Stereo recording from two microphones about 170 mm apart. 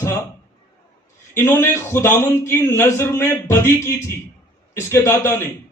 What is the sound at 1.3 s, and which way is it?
Speech, 15° left (ahead or behind).